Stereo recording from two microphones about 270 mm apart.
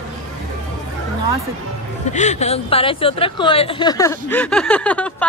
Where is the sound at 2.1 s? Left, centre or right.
Left; by 5.1 s centre.